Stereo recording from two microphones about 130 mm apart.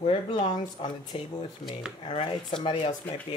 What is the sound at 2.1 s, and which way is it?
Speech, 40° left (ahead or behind).